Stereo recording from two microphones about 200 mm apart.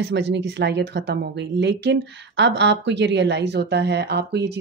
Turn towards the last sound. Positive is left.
turn(degrees=-55)  # may be behind; listen again after turning